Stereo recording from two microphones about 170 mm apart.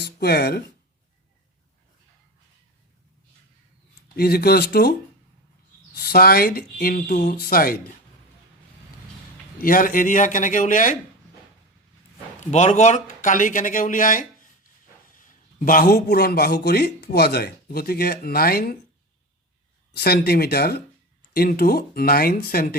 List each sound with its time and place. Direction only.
0.0 s speech: 70° left (ahead or behind)
4.1 s speech: 65° left (ahead or behind)
6.0 s speech: 65° left (ahead or behind)
9.6 s a man's voice: 55° left (ahead or behind)
12.4 s speech: 45° left (ahead or behind); by 18.8 s 60° left (ahead or behind)
20.0 s speech: 65° left (ahead or behind)